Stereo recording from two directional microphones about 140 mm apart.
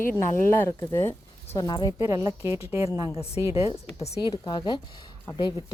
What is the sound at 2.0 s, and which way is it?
Speech, 20° right (ahead or behind).